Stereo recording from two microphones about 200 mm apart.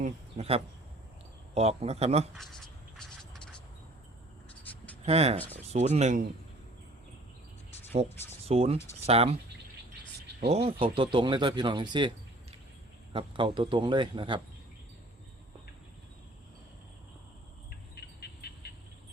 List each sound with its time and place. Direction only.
0.0 s a man's voice: 30° right (ahead or behind)
2.3 s speech: centre (ahead or behind)
3.0 s a sound: 5° left (ahead or behind)
5.0 s a man's voice: 30° right (ahead or behind)
8.4 s a man's voice: 30° right (ahead or behind)
10.5 s speech: 30° right (ahead or behind)
17.9 s a sound: 55° left (ahead or behind)